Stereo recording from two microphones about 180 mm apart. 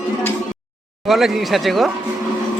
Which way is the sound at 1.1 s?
Centre (ahead or behind).